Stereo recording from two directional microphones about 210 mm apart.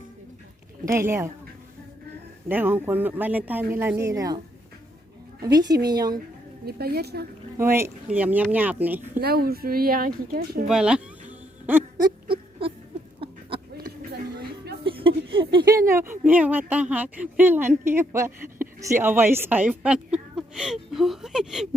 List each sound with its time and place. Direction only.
0.9 s speech: 10° right (ahead or behind)
2.5 s speech: 10° right (ahead or behind)
5.4 s speech: 20° right (ahead or behind)
6.7 s speech: 45° right (ahead or behind)
7.6 s speech: 10° right (ahead or behind)
9.1 s speech: 45° right (ahead or behind)
10.7 s music: 5° right (ahead or behind)
11.9 s a sound: 20° right (ahead or behind)
13.7 s a sound: 45° right (ahead or behind)
14.8 s a sound: 25° right (ahead or behind)
15.9 s a woman's voice: 10° right (ahead or behind)